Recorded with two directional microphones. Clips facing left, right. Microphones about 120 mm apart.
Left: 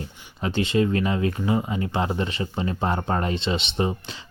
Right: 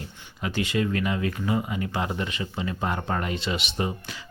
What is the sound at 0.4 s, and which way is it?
Speech, 30° left (ahead or behind).